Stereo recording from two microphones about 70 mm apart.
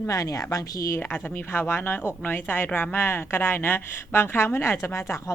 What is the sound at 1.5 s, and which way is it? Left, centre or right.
A woman's voice, left.